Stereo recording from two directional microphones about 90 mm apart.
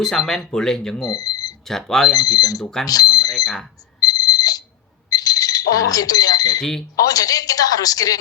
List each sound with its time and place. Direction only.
0.0 s speech: 5° left (ahead or behind)
1.0 s alarm clock: 45° left (ahead or behind)
1.6 s speech: 5° left (ahead or behind)
2.1 s a woman's voice: 45° left (ahead or behind)
2.6 s speech: 5° left (ahead or behind)
2.8 s alarm: 45° left (ahead or behind)
4.0 s alarm clock: 45° left (ahead or behind)
5.0 s alarm: 45° left (ahead or behind)
6.6 s speech: 5° left (ahead or behind)
6.9 s a woman's voice: 45° left (ahead or behind)